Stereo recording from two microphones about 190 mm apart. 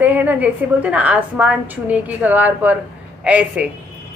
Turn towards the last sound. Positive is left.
turn(degrees=-5)  # may be behind; listen again after turning